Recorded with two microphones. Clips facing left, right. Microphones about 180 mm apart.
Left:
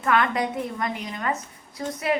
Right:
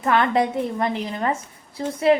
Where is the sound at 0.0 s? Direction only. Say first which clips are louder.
Right 3 dB; 30° right (ahead or behind).